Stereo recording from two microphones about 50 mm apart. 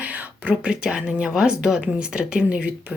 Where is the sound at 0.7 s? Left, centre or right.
Centre.